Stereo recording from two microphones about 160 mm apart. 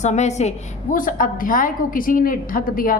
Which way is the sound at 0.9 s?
60° left (ahead or behind).